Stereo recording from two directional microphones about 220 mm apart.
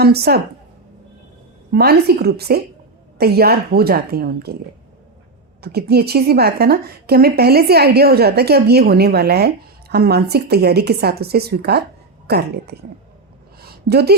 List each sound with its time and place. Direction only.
0.0 s a woman's voice: 45° right (ahead or behind)
1.7 s a woman's voice: 45° right (ahead or behind)
5.6 s a woman's voice: 45° right (ahead or behind)
13.6 s a sound: 45° right (ahead or behind)